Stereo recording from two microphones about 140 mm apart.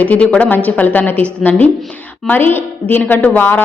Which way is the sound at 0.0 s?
10° left (ahead or behind).